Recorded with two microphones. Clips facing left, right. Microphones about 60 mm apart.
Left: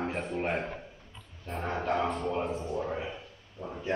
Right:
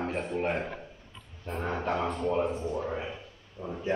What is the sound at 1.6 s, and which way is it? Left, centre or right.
Speech, centre.